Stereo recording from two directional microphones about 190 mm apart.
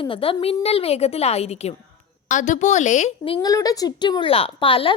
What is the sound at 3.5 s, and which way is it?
A woman's voice, 20° left (ahead or behind).